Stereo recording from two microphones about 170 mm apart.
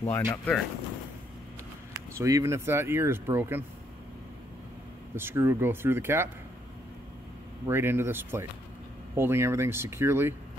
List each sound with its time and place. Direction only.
0.0 s speech: 15° left (ahead or behind)
2.1 s speech: 20° right (ahead or behind)
5.1 s speech: 15° right (ahead or behind)
7.6 s speech: 15° right (ahead or behind)